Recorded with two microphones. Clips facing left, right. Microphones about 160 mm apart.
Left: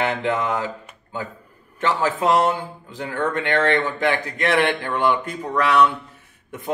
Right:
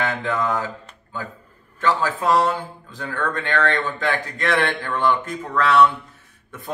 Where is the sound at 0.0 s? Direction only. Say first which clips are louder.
Left 1 dB; 15° left (ahead or behind).